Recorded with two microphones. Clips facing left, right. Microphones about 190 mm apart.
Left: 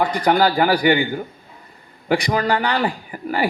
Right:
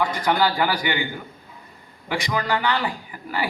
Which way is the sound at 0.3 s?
50° left (ahead or behind).